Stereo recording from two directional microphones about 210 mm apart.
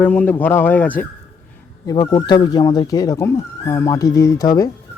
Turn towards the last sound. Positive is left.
turn(degrees=15)  # may be behind; listen again after turning